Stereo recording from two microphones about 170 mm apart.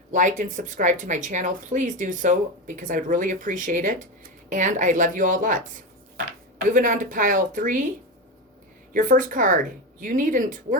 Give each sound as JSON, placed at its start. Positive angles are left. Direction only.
{"t": 0.1, "sound": "speech", "side_deg": -50}
{"t": 8.9, "sound": "speech", "side_deg": -50}